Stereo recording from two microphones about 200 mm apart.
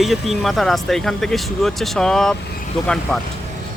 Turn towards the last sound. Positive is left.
turn(degrees=5)  # may be behind; listen again after turning